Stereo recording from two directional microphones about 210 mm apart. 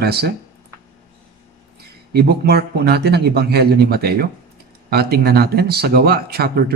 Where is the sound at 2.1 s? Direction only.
50° right (ahead or behind).